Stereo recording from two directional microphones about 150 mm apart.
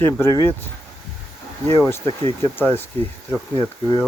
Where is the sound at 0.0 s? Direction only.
20° left (ahead or behind).